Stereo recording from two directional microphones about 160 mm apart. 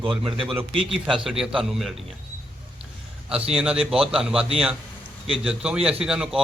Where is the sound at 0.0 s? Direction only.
35° right (ahead or behind).